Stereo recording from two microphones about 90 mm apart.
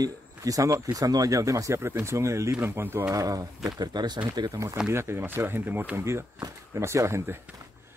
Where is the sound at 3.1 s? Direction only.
40° right (ahead or behind).